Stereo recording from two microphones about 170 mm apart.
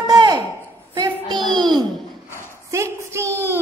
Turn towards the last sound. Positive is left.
turn(degrees=-15)  # may be behind; listen again after turning